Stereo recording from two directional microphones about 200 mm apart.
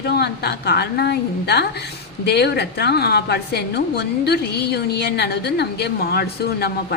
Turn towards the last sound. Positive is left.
turn(degrees=50)  # may be behind; listen again after turning